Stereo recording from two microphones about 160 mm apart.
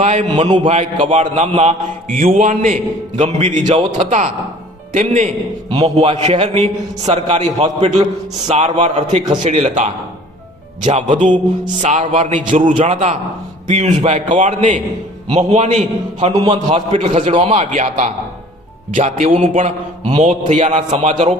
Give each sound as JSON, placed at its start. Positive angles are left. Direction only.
{"t": 0.0, "sound": "a man's voice", "side_deg": -45}
{"t": 5.6, "sound": "a man's voice", "side_deg": -30}